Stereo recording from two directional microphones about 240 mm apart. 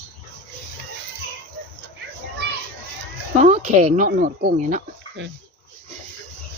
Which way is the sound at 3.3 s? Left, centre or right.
Right.